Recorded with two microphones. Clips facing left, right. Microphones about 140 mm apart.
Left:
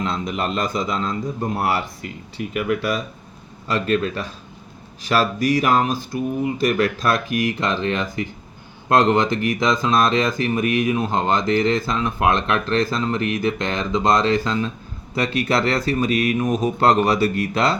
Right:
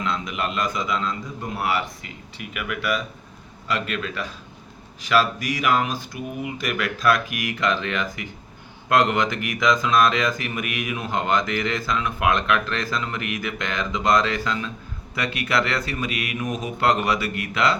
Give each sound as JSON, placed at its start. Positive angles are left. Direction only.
{"t": 0.0, "sound": "speech", "side_deg": 35}